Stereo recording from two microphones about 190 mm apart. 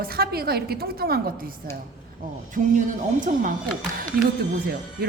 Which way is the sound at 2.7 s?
45° right (ahead or behind).